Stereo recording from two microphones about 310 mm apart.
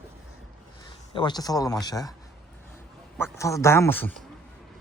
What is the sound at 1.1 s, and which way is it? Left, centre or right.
Speech, centre.